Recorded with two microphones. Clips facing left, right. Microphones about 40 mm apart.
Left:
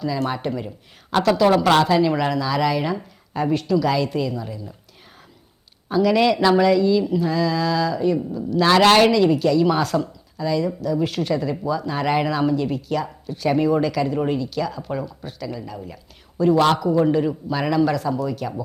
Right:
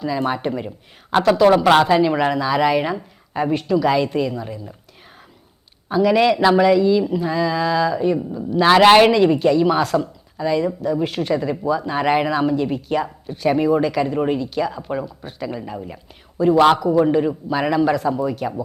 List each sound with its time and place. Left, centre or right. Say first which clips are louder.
0.0 s speech: right 2 dB; centre
5.9 s speech: right 2 dB; centre
9.7 s speech: right 2 dB; centre
10.3 s speech: right 2 dB; right
11.0 s speech: right 1 dB; centre
15.4 s speech: right 4 dB; right
16.4 s speech: right 3 dB; centre